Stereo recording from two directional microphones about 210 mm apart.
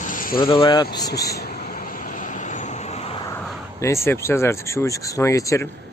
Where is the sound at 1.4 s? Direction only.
40° left (ahead or behind).